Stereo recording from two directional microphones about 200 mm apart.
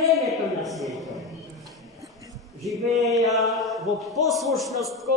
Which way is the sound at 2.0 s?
15° right (ahead or behind).